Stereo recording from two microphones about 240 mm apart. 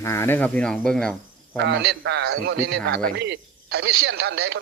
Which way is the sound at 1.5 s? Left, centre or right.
Right.